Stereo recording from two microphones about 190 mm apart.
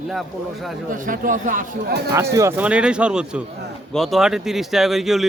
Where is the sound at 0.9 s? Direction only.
45° right (ahead or behind).